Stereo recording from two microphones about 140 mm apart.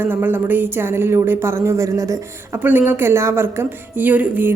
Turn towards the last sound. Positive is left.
turn(degrees=-10)  # may be behind; listen again after turning